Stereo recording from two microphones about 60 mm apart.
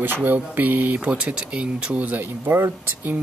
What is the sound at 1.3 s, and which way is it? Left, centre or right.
Speech, centre.